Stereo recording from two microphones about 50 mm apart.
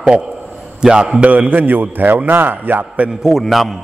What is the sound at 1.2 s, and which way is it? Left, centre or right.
Speech, right.